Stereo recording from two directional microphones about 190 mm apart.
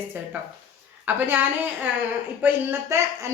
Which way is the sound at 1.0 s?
10° right (ahead or behind).